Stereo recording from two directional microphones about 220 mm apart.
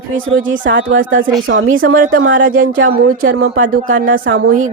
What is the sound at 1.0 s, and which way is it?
Speech, 40° right (ahead or behind).